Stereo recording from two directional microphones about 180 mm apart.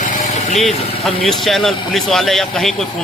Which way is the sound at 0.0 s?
40° left (ahead or behind).